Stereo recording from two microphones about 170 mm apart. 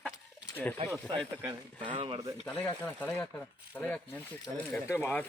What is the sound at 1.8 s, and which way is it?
Speech, 30° right (ahead or behind).